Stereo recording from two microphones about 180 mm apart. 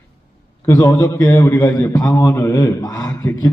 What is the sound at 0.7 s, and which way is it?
A man's voice, 20° left (ahead or behind).